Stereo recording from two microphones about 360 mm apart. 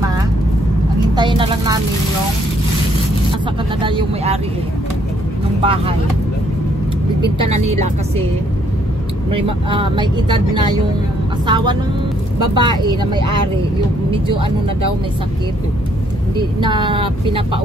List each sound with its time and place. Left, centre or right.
1.1 s speech: centre
3.8 s speech: centre
5.6 s speech: centre
7.6 s speech: centre
9.3 s speech: centre
14.2 s speech: right
16.5 s speech: centre